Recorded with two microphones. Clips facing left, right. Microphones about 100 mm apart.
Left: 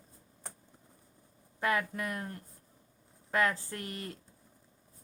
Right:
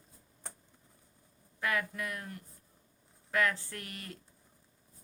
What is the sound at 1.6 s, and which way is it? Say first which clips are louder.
A woman's voice: left 3 dB; 30° left (ahead or behind).